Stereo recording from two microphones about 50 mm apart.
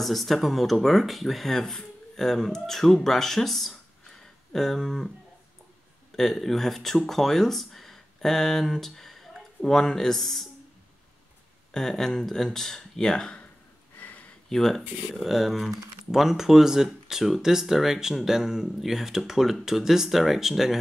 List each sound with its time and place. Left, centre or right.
0.0 s speech: centre
6.1 s speech: centre
11.7 s speech: centre
13.9 s a sound: left
14.5 s speech: centre